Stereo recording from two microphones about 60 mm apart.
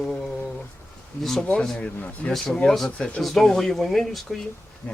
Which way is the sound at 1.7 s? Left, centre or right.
Left.